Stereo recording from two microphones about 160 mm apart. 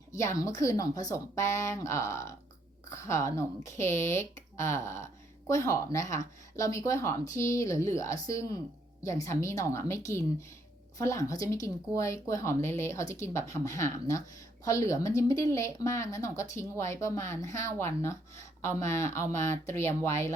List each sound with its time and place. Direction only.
0.1 s a woman's voice: 20° left (ahead or behind)